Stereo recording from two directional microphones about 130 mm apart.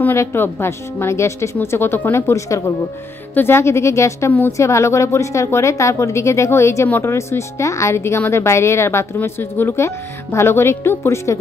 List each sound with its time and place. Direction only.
0.0 s speech: 15° left (ahead or behind)